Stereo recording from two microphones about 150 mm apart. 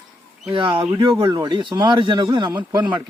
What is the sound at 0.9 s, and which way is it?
A man's voice, 25° right (ahead or behind).